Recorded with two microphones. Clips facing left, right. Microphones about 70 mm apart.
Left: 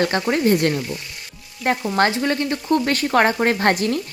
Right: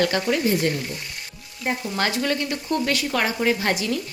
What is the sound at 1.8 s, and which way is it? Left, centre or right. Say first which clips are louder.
Speech: left 5 dB; left.